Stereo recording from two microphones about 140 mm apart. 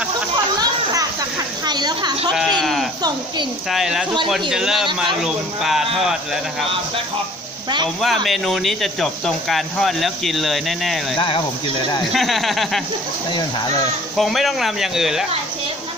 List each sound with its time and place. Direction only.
1.7 s a sound: 30° right (ahead or behind)
2.6 s livestock: centre (ahead or behind)
3.7 s speech: 5° right (ahead or behind)
8.0 s speech: centre (ahead or behind)
11.1 s speech: 35° left (ahead or behind)
12.1 s speech: centre (ahead or behind)
14.1 s speech: centre (ahead or behind)